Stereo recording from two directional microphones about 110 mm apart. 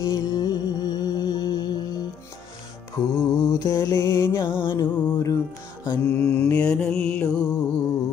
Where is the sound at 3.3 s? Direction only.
25° left (ahead or behind).